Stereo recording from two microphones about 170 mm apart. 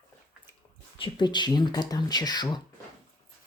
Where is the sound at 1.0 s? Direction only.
25° left (ahead or behind).